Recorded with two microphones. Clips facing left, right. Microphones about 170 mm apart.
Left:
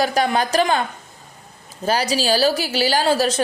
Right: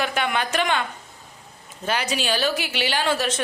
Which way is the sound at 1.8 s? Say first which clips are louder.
Left 5 dB; 35° left (ahead or behind).